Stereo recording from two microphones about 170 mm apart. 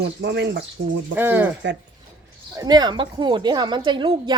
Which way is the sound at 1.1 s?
10° right (ahead or behind).